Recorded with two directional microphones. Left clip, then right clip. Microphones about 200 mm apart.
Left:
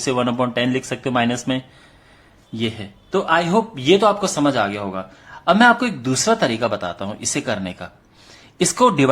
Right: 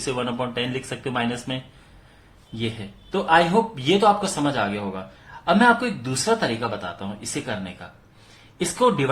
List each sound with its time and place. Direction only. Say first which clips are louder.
0.0 s a man's voice: left 6 dB; 40° left (ahead or behind)
8.5 s speech: left 5 dB; 45° left (ahead or behind)